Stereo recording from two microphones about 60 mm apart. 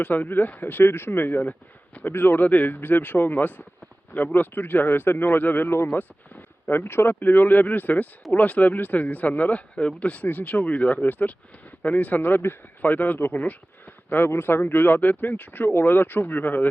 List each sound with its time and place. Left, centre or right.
0.0 s speech: left
12.2 s speech: left